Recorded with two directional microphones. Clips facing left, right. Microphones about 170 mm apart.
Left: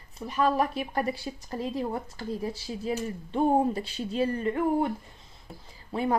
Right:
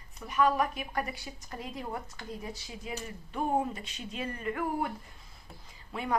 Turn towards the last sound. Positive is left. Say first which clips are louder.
# left 8 dB
turn(degrees=30)  # may be behind; listen again after turning